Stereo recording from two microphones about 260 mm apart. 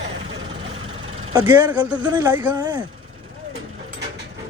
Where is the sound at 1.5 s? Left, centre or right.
Centre.